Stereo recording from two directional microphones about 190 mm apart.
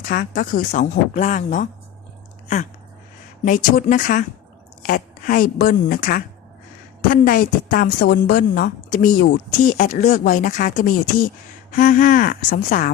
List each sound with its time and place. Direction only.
0.0 s a woman's voice: 45° left (ahead or behind)
3.4 s a woman's voice: 45° left (ahead or behind)